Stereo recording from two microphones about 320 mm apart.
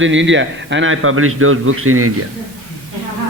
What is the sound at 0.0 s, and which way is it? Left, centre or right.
A man's voice, right.